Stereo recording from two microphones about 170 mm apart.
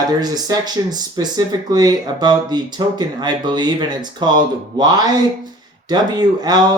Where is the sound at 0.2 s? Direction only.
25° right (ahead or behind).